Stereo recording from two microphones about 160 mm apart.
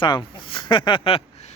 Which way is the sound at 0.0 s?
30° left (ahead or behind).